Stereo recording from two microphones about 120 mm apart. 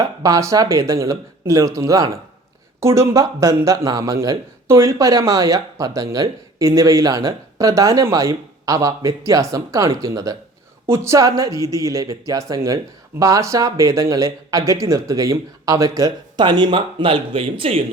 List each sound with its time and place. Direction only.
0.0 s speech: 30° right (ahead or behind); by 17.8 s 50° right (ahead or behind)